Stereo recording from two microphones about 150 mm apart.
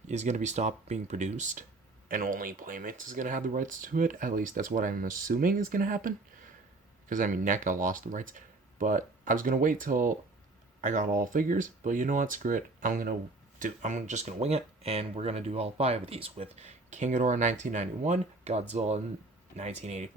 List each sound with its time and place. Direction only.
0.1 s speech: 50° right (ahead or behind)